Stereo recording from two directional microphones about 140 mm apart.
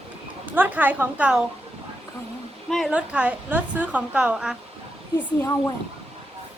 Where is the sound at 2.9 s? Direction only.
10° right (ahead or behind).